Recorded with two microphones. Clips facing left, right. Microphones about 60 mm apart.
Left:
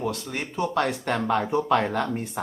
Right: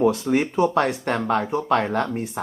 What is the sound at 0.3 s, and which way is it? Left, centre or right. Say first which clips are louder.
Speech: right 6 dB; centre.